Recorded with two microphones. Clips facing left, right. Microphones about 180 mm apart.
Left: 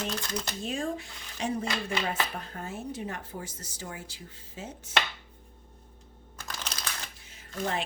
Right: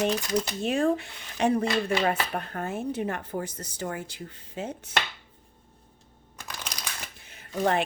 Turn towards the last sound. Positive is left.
turn(degrees=-65)  # may be behind; listen again after turning